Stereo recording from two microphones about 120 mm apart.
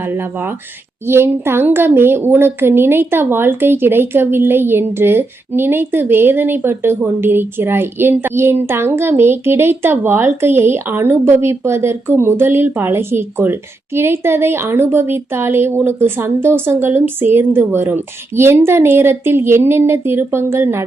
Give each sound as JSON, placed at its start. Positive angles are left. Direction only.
{"t": 0.0, "sound": "a woman's voice", "side_deg": -20}